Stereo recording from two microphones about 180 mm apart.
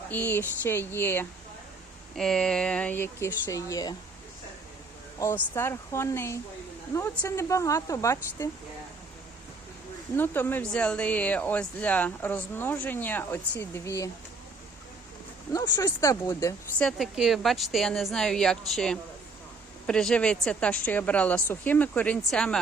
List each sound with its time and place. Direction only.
0.1 s speech: 10° left (ahead or behind)
5.2 s speech: 15° left (ahead or behind)
10.2 s speech: 10° left (ahead or behind)
15.5 s speech: 20° left (ahead or behind)
16.8 s a woman's voice: centre (ahead or behind)